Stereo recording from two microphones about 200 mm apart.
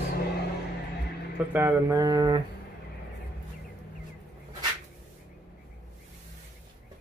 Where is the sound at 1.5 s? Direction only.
15° right (ahead or behind).